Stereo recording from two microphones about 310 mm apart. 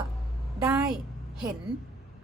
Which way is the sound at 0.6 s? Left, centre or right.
Centre.